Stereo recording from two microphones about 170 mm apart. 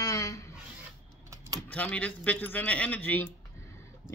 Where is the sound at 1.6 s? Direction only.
10° left (ahead or behind).